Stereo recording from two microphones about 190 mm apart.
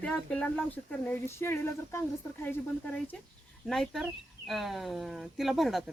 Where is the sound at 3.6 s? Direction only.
Centre (ahead or behind).